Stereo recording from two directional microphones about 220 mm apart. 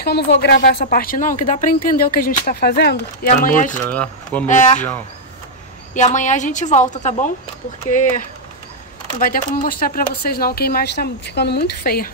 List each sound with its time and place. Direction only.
0.0 s speech: 50° left (ahead or behind)
3.9 s speech: 5° left (ahead or behind)
4.5 s speech: 35° left (ahead or behind)
5.9 s speech: 35° left (ahead or behind)
9.2 s speech: 40° left (ahead or behind)